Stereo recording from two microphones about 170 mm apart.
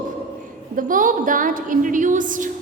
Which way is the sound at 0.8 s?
55° right (ahead or behind).